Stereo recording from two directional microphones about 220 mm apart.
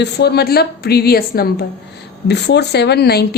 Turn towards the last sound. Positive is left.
turn(degrees=45)  # may be behind; listen again after turning